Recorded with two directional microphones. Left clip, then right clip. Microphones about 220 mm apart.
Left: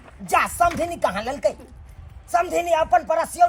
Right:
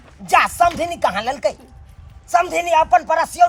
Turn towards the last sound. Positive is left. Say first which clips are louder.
# right 4 dB
turn(degrees=-15)  # may be behind; listen again after turning